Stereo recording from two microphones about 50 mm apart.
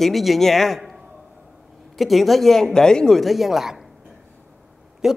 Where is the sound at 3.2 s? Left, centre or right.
Centre.